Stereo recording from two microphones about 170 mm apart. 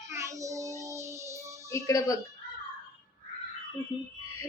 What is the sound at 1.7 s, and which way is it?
Speech, 20° left (ahead or behind).